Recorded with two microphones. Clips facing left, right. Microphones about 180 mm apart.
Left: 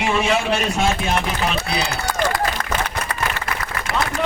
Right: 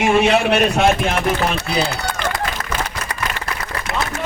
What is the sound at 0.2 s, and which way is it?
Speech, 65° right (ahead or behind).